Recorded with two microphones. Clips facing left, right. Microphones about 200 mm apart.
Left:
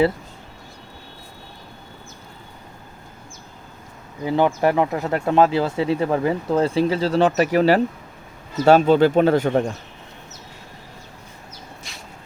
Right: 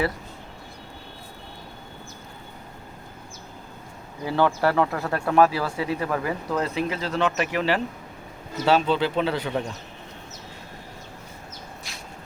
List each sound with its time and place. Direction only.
4.3 s speech: 20° left (ahead or behind); by 9.6 s 45° left (ahead or behind)